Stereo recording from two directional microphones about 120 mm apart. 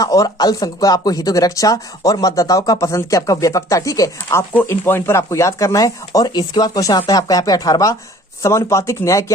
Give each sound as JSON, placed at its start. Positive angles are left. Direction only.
{"t": 0.0, "sound": "speech", "side_deg": 30}